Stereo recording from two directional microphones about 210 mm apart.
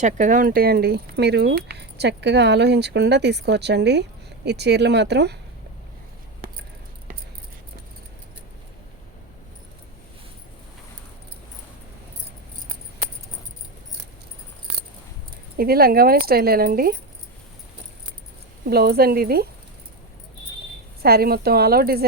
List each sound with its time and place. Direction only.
0.0 s speech: 40° right (ahead or behind)
15.5 s speech: 45° right (ahead or behind)
18.7 s speech: 50° right (ahead or behind)
21.0 s speech: 45° right (ahead or behind)